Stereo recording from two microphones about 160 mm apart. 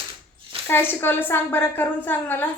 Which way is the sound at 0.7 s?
15° left (ahead or behind).